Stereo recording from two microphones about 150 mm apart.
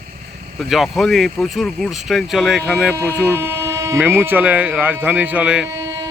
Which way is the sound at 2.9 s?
20° right (ahead or behind).